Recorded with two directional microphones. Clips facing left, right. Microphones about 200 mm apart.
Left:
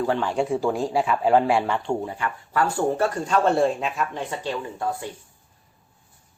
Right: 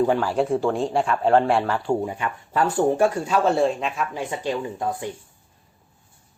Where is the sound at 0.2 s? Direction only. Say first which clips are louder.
Right 2 dB; 5° right (ahead or behind).